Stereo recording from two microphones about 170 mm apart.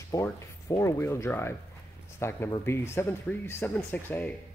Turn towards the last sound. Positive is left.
turn(degrees=10)  # may be behind; listen again after turning